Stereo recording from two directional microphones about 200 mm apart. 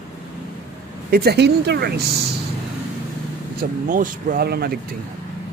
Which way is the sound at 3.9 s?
40° right (ahead or behind).